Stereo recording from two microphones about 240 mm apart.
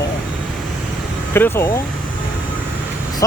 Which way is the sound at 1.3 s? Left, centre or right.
Centre.